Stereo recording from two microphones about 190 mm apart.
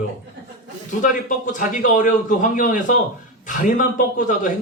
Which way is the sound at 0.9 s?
40° left (ahead or behind).